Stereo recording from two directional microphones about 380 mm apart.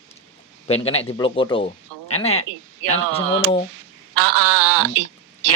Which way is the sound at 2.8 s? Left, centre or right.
Right.